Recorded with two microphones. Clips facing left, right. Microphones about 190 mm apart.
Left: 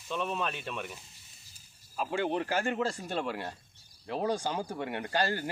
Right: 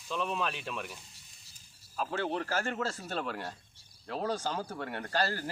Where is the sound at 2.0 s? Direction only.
10° left (ahead or behind).